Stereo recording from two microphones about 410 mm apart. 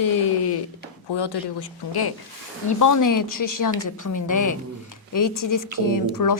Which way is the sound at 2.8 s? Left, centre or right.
Left.